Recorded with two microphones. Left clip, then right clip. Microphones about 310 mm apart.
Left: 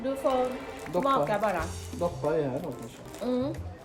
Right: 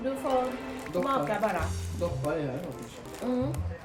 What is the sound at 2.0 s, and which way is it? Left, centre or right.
Speech, left.